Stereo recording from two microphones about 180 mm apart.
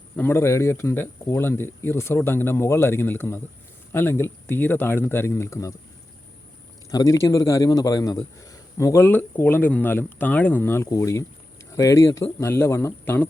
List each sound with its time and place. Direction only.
0.2 s a man's voice: 15° left (ahead or behind)
6.9 s a man's voice: 20° left (ahead or behind)